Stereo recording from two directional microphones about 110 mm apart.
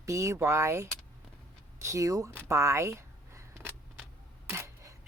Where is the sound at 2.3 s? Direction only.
25° right (ahead or behind).